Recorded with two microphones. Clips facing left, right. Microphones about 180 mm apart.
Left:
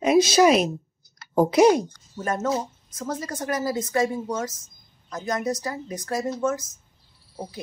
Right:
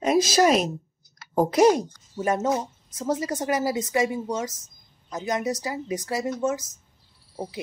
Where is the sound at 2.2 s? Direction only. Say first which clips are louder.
Right 2 dB; 15° right (ahead or behind).